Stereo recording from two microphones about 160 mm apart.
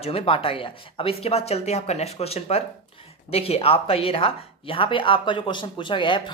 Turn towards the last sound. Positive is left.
turn(degrees=30)  # may be behind; listen again after turning